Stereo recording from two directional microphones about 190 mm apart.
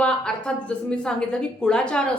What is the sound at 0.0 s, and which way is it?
A woman's voice, 5° left (ahead or behind).